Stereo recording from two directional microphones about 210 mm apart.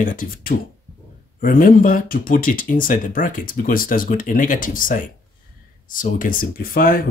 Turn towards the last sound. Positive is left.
turn(degrees=45)  # may be behind; listen again after turning